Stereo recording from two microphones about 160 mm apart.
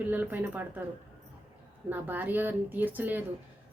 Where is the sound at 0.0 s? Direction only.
10° right (ahead or behind).